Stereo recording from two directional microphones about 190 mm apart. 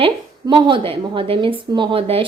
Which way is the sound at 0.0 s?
25° right (ahead or behind).